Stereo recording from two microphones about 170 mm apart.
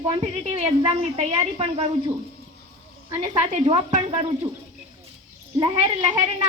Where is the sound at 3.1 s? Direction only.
35° right (ahead or behind).